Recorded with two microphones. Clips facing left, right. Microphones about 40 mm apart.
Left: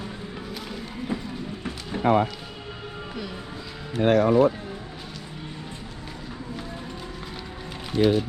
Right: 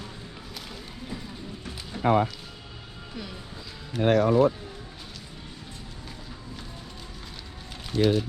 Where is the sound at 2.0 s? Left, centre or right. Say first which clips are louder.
Left 2 dB; left.